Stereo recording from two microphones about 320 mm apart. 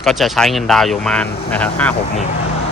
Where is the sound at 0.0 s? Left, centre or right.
Centre.